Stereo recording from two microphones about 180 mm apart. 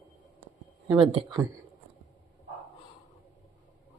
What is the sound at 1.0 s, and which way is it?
Speech, 25° right (ahead or behind).